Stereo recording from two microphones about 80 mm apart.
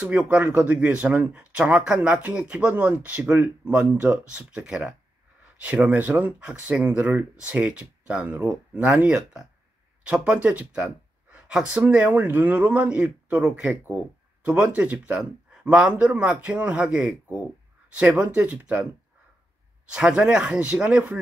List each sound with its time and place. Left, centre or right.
0.0 s speech: centre
11.8 s a man's voice: right
19.9 s speech: centre